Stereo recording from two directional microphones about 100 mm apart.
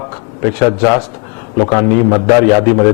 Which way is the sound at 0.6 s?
20° left (ahead or behind).